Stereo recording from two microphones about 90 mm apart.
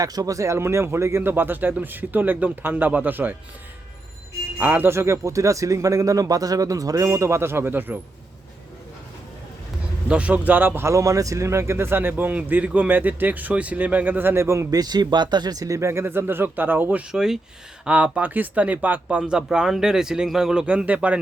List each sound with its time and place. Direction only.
0.0 s speech: 45° right (ahead or behind); by 3.3 s 20° right (ahead or behind)
4.6 s speech: 20° right (ahead or behind)
10.1 s speech: 15° right (ahead or behind)
17.1 s speech: 5° right (ahead or behind)